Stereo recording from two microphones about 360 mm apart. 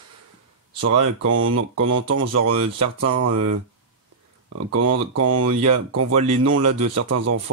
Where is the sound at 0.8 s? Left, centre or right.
Right.